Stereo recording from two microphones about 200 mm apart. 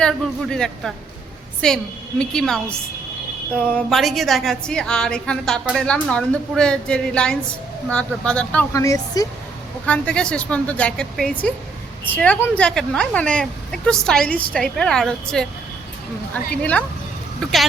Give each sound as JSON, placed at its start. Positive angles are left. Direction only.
{"t": 0.0, "sound": "a woman's voice", "side_deg": 0}
{"t": 3.8, "sound": "a woman's voice", "side_deg": 0}
{"t": 9.8, "sound": "a woman's voice", "side_deg": 5}